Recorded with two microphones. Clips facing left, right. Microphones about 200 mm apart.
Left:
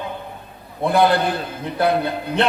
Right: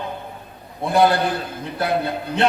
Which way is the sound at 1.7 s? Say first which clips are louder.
Left 3 dB; 55° left (ahead or behind).